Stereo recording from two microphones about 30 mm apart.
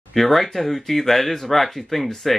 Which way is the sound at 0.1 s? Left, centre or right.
Centre.